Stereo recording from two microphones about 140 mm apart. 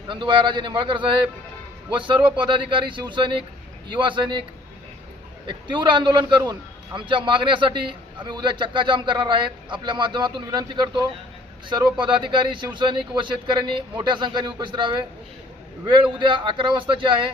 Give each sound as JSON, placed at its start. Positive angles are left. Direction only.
{"t": 0.1, "sound": "a man's voice", "side_deg": -35}
{"t": 5.5, "sound": "a man's voice", "side_deg": -35}